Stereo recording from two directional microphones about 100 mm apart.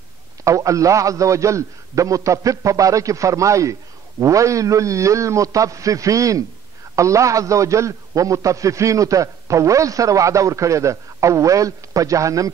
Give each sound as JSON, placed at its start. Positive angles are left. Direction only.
{"t": 0.4, "sound": "a man's voice", "side_deg": -30}